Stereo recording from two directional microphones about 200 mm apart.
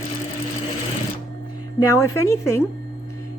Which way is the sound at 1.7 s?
15° left (ahead or behind).